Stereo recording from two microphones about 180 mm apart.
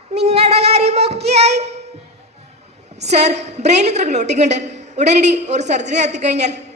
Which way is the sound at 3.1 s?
40° right (ahead or behind).